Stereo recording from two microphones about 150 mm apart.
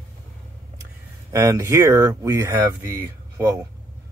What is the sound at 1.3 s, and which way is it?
A man's voice, 20° right (ahead or behind).